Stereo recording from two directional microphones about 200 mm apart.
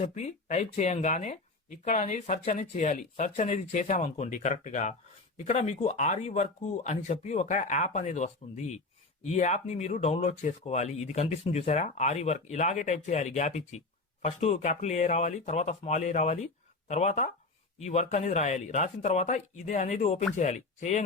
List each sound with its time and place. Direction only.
0.0 s speech: 35° left (ahead or behind)